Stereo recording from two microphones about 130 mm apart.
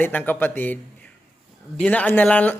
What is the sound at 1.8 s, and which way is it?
Speech, 10° left (ahead or behind).